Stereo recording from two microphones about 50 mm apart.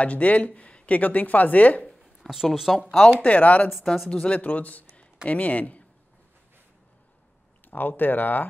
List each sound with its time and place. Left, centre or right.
0.0 s speech: left
2.1 s speech: centre
3.2 s speech: left
3.7 s speech: centre
4.1 s speech: left
4.9 s a sound: left
7.6 s speech: left